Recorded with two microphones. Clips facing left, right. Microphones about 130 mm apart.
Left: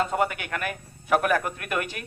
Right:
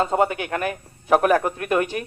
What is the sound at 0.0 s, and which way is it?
A man's voice, 30° right (ahead or behind).